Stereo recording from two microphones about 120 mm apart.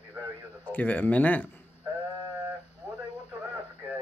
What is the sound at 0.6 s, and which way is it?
Speech, 15° left (ahead or behind).